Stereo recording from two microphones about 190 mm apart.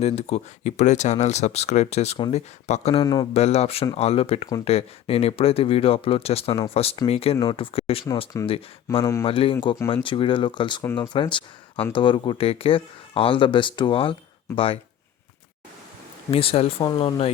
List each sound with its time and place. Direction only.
0.0 s speech: 35° left (ahead or behind)
3.0 s speech: 20° left (ahead or behind)
3.3 s speech: 35° left (ahead or behind)
8.1 s speech: 20° left (ahead or behind)
9.2 s speech: 30° left (ahead or behind)
9.6 s speech: 15° left (ahead or behind)
9.9 s speech: 25° left (ahead or behind)
10.8 s speech: 10° left (ahead or behind)
11.1 s speech: 25° left (ahead or behind)
16.3 s speech: 30° left (ahead or behind)